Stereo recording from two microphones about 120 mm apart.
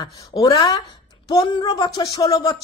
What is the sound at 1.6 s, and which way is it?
Speech, 40° left (ahead or behind).